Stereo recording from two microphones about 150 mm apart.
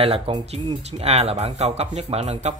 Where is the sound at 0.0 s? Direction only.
40° right (ahead or behind).